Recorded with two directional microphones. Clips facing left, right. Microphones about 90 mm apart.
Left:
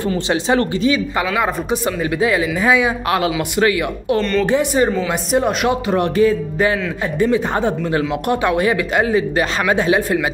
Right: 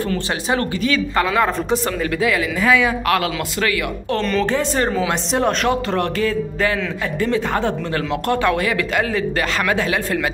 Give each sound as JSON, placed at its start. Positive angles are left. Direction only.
{"t": 0.0, "sound": "speech", "side_deg": 20}
{"t": 1.2, "sound": "speech", "side_deg": 5}
{"t": 1.7, "sound": "speech", "side_deg": 20}
{"t": 4.2, "sound": "speech", "side_deg": 0}
{"t": 4.5, "sound": "speech", "side_deg": 10}